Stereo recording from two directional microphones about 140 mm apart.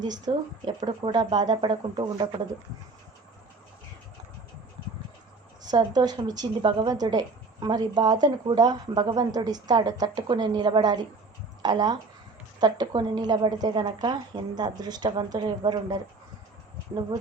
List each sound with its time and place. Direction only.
0.3 s a woman's voice: 40° right (ahead or behind)
5.7 s a woman's voice: 30° right (ahead or behind)